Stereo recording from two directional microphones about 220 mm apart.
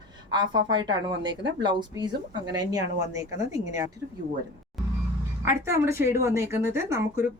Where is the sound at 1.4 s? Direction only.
20° right (ahead or behind).